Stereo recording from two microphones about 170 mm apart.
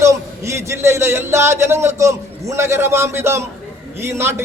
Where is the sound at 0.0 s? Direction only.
15° right (ahead or behind).